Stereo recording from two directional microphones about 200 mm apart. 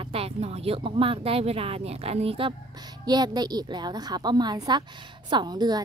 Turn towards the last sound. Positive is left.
turn(degrees=-20)  # may be behind; listen again after turning